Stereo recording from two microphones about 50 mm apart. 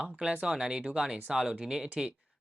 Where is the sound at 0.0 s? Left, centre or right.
Right.